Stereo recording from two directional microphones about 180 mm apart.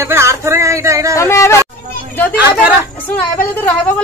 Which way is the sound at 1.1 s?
15° left (ahead or behind).